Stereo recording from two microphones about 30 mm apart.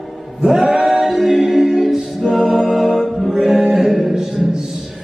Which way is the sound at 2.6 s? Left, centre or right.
Centre.